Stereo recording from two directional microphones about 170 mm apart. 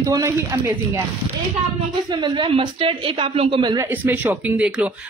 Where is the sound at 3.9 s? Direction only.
10° right (ahead or behind).